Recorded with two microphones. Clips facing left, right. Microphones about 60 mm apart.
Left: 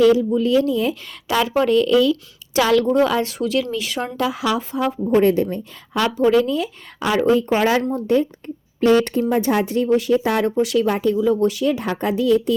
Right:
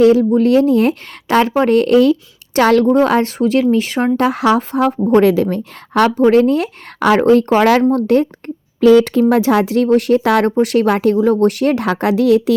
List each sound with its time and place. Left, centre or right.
0.0 s a woman's voice: right
1.3 s speech: right
4.4 s a woman's voice: right
5.2 s speech: right
6.1 s speech: right
9.3 s speech: right
10.5 s speech: right
10.8 s speech: right